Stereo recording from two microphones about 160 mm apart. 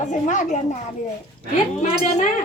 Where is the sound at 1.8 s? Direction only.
50° left (ahead or behind).